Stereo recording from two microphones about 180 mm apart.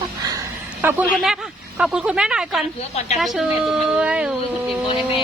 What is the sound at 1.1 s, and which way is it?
A woman's voice, centre (ahead or behind).